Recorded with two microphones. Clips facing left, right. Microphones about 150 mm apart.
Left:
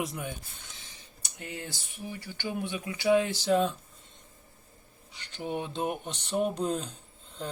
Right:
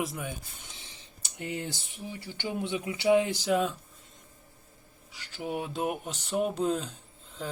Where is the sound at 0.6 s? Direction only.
20° right (ahead or behind).